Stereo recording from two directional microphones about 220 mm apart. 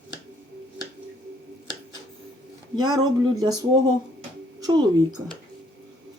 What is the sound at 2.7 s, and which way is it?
Speech, 20° right (ahead or behind).